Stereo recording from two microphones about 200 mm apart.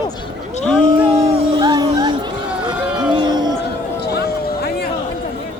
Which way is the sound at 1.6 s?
20° right (ahead or behind).